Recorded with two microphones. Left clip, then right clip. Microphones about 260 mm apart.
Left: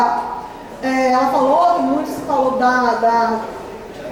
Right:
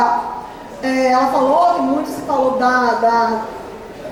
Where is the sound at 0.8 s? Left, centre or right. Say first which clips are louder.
Right 1 dB; centre.